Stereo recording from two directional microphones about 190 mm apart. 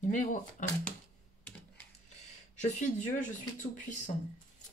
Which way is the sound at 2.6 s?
40° left (ahead or behind).